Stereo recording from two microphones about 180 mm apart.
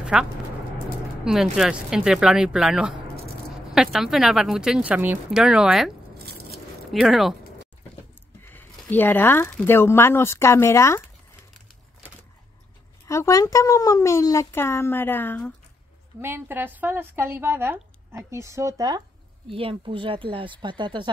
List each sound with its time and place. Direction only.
0.0 s a woman's voice: 5° right (ahead or behind)
6.1 s biting: 60° right (ahead or behind)
6.9 s a woman's voice: centre (ahead or behind)
8.5 s speech: 10° left (ahead or behind)
13.0 s speech: 15° left (ahead or behind)
16.2 s speech: 15° right (ahead or behind)